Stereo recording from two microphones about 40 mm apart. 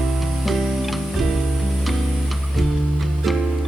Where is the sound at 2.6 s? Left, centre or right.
Centre.